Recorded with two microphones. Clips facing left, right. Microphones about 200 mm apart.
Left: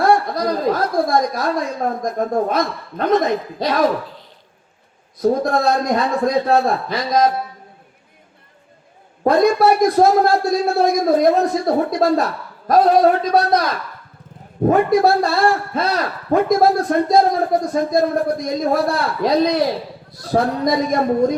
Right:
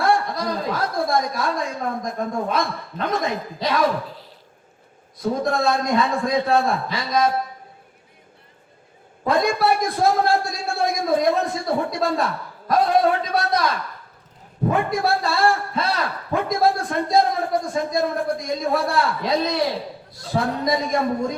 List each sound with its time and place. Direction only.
0.0 s a man's voice: 40° left (ahead or behind)
5.2 s a man's voice: 40° left (ahead or behind)
9.2 s a man's voice: 40° left (ahead or behind)